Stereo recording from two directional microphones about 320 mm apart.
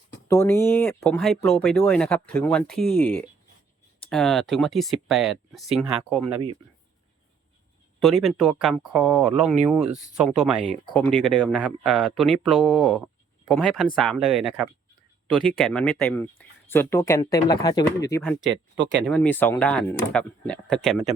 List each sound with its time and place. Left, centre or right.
0.3 s speech: centre
8.0 s speech: centre
18.8 s speech: right
19.0 s speech: centre